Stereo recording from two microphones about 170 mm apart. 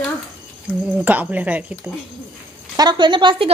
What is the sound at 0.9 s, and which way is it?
Speech, 10° right (ahead or behind).